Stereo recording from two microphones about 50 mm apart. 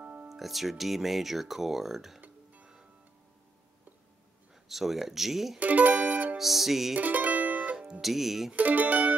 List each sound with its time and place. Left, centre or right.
0.0 s music: right
0.3 s speech: centre
2.6 s music: centre
4.6 s speech: centre
5.6 s music: right
6.3 s speech: centre
7.0 s music: right
7.5 s music: centre
8.0 s speech: centre
8.5 s speech: right